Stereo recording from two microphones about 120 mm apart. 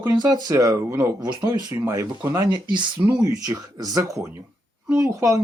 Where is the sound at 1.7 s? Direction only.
25° right (ahead or behind).